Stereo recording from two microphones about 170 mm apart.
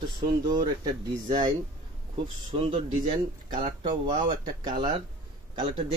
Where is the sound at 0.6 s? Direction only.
25° right (ahead or behind).